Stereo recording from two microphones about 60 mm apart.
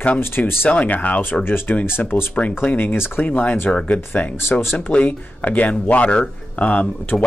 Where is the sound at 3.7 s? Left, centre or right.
Centre.